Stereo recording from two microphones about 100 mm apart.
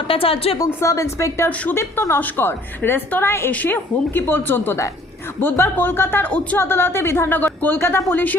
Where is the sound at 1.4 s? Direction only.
15° left (ahead or behind).